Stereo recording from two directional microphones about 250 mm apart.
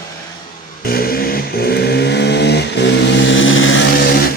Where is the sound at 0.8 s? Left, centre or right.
Left.